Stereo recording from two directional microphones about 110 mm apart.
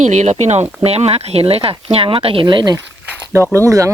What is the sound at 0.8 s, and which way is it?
Speech, 65° right (ahead or behind).